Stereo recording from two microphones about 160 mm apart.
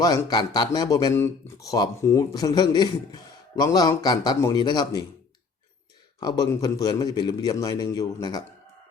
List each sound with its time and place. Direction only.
0.0 s speech: 25° left (ahead or behind)
6.1 s speech: 25° left (ahead or behind)